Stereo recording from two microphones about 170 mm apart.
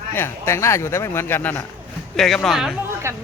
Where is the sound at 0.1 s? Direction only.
15° left (ahead or behind).